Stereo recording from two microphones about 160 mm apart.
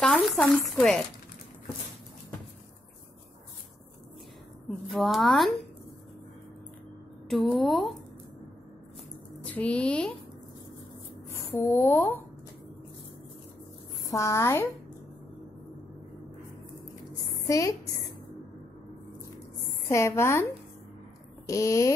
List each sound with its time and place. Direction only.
0.0 s speech: 5° left (ahead or behind)
4.6 s speech: centre (ahead or behind)
7.2 s speech: centre (ahead or behind)
9.4 s a woman's voice: 10° left (ahead or behind)
11.2 s speech: 15° left (ahead or behind)
14.0 s a woman's voice: 20° left (ahead or behind)
17.5 s a woman's voice: 20° left (ahead or behind)
19.9 s a woman's voice: 15° left (ahead or behind)